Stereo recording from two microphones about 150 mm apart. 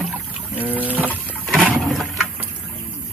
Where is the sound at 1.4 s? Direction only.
Centre (ahead or behind).